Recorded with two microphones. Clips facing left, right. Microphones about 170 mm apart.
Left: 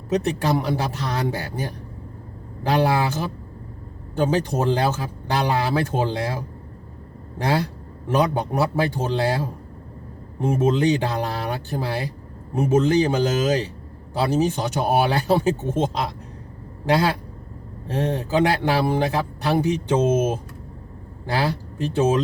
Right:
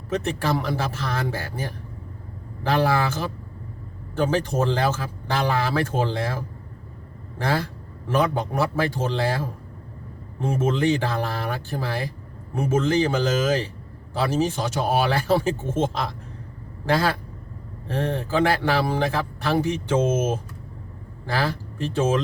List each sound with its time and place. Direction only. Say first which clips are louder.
0.1 s speech: left 3 dB; 15° left (ahead or behind)